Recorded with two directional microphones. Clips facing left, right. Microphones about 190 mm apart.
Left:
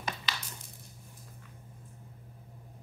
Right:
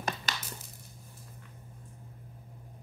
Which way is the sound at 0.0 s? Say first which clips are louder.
Right 2 dB; 45° right (ahead or behind).